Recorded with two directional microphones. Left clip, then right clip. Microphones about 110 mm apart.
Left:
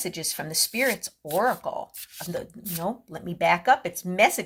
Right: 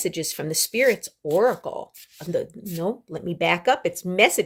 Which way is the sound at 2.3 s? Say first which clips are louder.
Right 8 dB; 50° right (ahead or behind).